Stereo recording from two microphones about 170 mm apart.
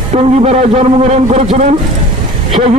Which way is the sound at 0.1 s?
40° right (ahead or behind).